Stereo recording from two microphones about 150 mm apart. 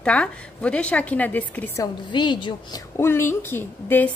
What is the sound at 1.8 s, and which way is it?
A woman's voice, 30° left (ahead or behind).